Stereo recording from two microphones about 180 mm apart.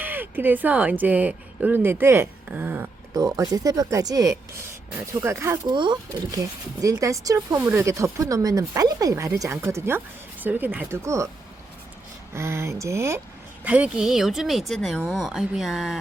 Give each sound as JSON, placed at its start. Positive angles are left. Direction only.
{"t": 0.0, "sound": "speech", "side_deg": -10}
{"t": 12.3, "sound": "speech", "side_deg": -15}